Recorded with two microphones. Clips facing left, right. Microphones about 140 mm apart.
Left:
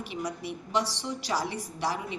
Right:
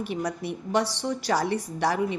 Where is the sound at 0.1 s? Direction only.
60° right (ahead or behind).